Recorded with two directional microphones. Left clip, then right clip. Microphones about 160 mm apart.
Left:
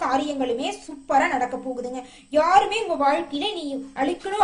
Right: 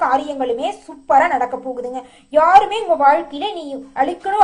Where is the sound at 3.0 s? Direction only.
15° left (ahead or behind).